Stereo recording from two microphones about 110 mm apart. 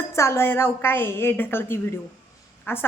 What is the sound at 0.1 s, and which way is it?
Speech, 25° left (ahead or behind).